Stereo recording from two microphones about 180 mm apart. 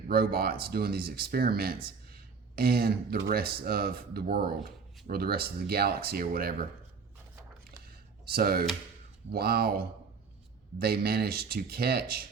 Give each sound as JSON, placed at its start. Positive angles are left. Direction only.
{"t": 0.1, "sound": "speech", "side_deg": -60}
{"t": 7.9, "sound": "a sound", "side_deg": -60}
{"t": 9.3, "sound": "speech", "side_deg": -60}